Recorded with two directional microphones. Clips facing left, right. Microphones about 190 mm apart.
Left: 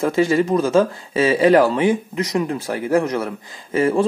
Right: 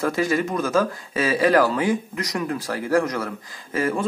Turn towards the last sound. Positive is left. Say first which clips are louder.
# left 6 dB
turn(degrees=25)  # may be behind; listen again after turning